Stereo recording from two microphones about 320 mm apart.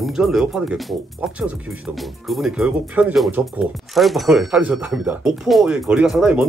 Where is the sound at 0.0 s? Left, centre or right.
Centre.